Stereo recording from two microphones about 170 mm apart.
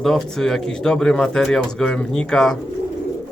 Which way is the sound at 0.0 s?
Centre (ahead or behind).